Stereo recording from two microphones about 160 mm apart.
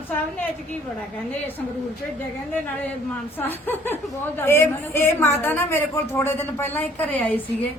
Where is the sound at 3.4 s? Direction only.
10° left (ahead or behind).